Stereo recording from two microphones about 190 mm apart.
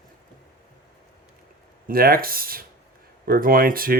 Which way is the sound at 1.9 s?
50° right (ahead or behind).